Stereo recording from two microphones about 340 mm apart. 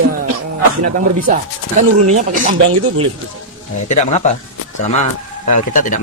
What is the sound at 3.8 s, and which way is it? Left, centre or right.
A man's voice, centre.